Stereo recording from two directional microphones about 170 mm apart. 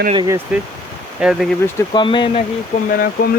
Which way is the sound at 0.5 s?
5° right (ahead or behind).